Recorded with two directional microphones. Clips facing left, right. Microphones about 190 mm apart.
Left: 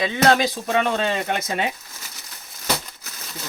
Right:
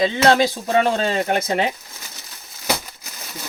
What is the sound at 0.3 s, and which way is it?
Speech, 30° right (ahead or behind).